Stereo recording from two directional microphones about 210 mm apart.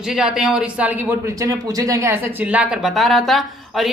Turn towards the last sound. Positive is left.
turn(degrees=0)  # may be behind; listen again after turning